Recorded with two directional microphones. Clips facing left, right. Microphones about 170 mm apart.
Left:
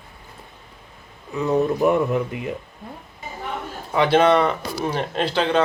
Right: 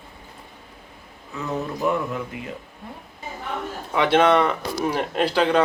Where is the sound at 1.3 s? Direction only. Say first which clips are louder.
Left 8 dB; 15° left (ahead or behind).